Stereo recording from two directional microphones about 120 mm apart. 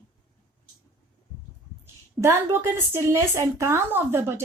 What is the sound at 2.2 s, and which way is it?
Speech, 20° right (ahead or behind).